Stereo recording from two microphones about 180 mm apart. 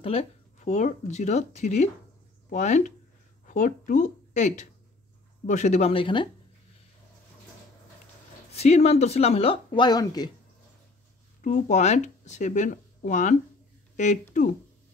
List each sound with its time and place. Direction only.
0.0 s speech: 35° left (ahead or behind)
8.5 s speech: 35° left (ahead or behind)
11.4 s speech: 45° left (ahead or behind)